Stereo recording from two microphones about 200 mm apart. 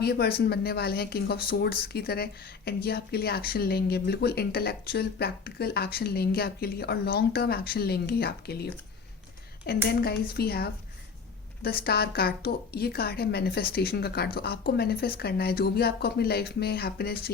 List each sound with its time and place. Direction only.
0.0 s speech: 55° left (ahead or behind)